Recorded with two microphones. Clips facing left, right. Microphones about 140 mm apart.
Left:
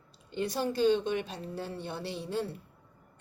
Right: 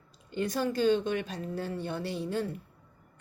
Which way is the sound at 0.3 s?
25° left (ahead or behind).